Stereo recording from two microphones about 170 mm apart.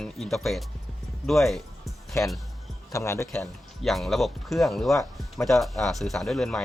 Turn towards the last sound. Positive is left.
turn(degrees=0)  # may be behind; listen again after turning